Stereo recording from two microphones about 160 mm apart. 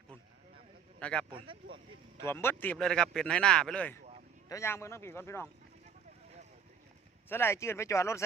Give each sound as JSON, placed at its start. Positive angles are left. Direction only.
{"t": 0.9, "sound": "speech", "side_deg": 5}
{"t": 2.2, "sound": "speech", "side_deg": 15}
{"t": 7.3, "sound": "speech", "side_deg": 15}